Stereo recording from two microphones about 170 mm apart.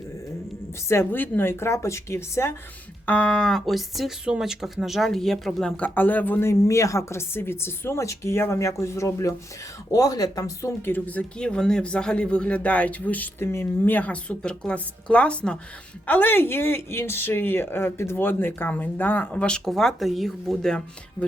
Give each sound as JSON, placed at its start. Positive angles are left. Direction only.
{"t": 0.9, "sound": "speech", "side_deg": 15}